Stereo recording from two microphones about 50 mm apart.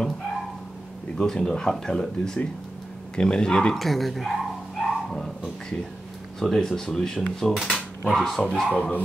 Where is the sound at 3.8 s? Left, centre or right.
Centre.